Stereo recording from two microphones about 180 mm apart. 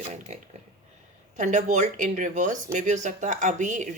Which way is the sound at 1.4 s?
45° right (ahead or behind).